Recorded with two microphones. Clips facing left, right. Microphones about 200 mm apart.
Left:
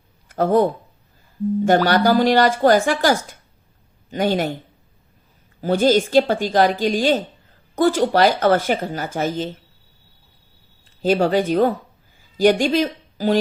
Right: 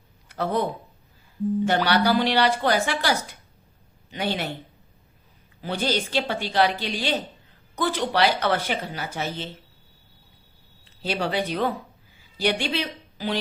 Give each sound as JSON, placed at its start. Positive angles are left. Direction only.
{"t": 0.3, "sound": "speech", "side_deg": 45}
{"t": 5.5, "sound": "speech", "side_deg": 45}
{"t": 11.0, "sound": "a woman's voice", "side_deg": 45}